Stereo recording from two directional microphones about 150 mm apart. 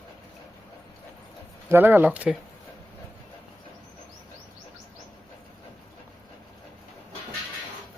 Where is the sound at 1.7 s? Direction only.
15° right (ahead or behind).